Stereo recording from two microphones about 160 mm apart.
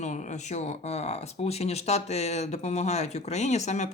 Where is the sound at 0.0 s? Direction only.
50° left (ahead or behind).